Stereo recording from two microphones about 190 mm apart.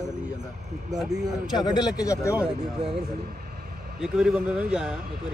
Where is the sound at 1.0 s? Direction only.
5° right (ahead or behind).